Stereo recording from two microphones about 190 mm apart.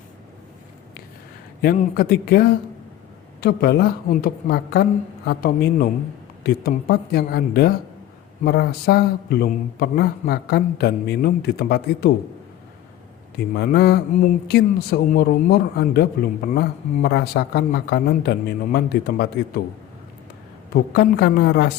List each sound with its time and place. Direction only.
1.6 s a man's voice: 55° left (ahead or behind)
13.5 s a man's voice: 55° left (ahead or behind)
20.7 s a man's voice: 55° left (ahead or behind)